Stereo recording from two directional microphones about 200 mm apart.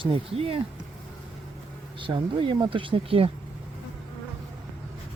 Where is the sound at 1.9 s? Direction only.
25° right (ahead or behind).